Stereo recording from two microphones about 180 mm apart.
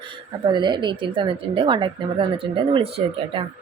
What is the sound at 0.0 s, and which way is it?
A woman's voice, 25° right (ahead or behind).